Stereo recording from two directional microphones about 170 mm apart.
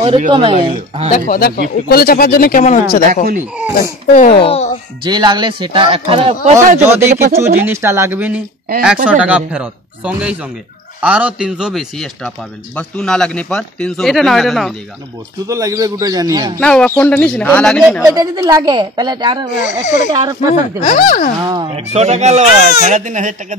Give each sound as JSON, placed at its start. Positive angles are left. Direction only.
{"t": 0.3, "sound": "speech", "side_deg": -30}
{"t": 1.3, "sound": "speech", "side_deg": 65}
{"t": 3.5, "sound": "speech", "side_deg": -10}
{"t": 4.1, "sound": "speech", "side_deg": 50}
{"t": 4.4, "sound": "speech", "side_deg": 35}
{"t": 5.0, "sound": "speech", "side_deg": -25}
{"t": 6.8, "sound": "a man's voice", "side_deg": -15}
{"t": 15.4, "sound": "a woman's voice", "side_deg": -20}
{"t": 16.5, "sound": "speech", "side_deg": 5}
{"t": 18.0, "sound": "a woman's voice", "side_deg": -20}
{"t": 19.6, "sound": "speech", "side_deg": 45}
{"t": 20.2, "sound": "a woman's voice", "side_deg": -20}
{"t": 20.5, "sound": "speech", "side_deg": 50}
{"t": 21.5, "sound": "speech", "side_deg": -35}